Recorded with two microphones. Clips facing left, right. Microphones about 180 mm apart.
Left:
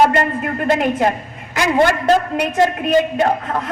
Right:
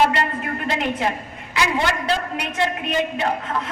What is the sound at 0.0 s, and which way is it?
A woman's voice, 45° left (ahead or behind).